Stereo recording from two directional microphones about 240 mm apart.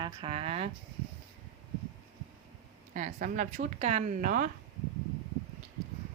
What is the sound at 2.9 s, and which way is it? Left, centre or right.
A woman's voice, right.